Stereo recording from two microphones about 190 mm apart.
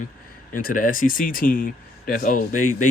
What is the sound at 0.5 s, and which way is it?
Speech, 45° left (ahead or behind).